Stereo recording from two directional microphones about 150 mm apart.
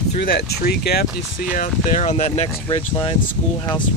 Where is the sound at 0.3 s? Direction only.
90° left; by 2.5 s 45° left (ahead or behind).